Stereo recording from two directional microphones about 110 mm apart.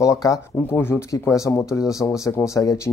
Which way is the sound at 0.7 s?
20° left (ahead or behind).